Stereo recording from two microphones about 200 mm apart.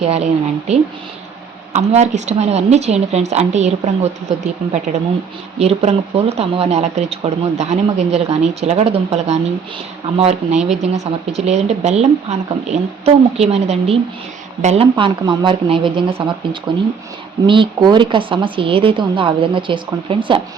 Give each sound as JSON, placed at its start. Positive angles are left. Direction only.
{"t": 0.0, "sound": "speech", "side_deg": -30}
{"t": 1.7, "sound": "speech", "side_deg": -35}